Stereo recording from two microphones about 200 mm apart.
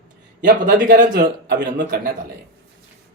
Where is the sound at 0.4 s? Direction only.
50° right (ahead or behind).